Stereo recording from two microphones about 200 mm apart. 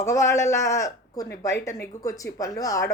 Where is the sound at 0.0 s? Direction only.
15° left (ahead or behind).